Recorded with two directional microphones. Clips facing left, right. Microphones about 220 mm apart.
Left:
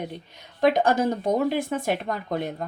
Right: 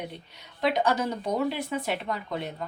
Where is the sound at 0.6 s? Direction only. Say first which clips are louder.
Left 5 dB; 50° left (ahead or behind).